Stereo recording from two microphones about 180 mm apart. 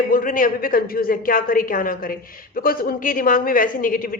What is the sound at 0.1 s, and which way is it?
A woman's voice, 50° left (ahead or behind).